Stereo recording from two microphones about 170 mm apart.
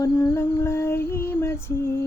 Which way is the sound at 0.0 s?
15° left (ahead or behind).